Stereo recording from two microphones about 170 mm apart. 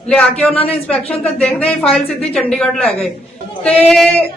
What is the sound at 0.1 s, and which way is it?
Speech, 5° left (ahead or behind).